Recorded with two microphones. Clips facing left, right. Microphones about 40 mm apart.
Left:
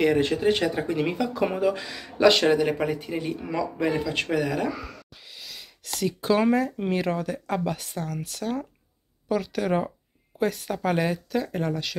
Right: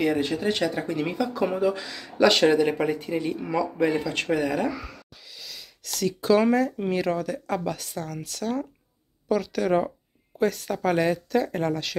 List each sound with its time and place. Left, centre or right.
0.0 s speech: left
0.4 s speech: left
1.8 s speech: centre
2.2 s speech: centre
5.3 s sneeze: centre
5.9 s speech: left; by 11.9 s centre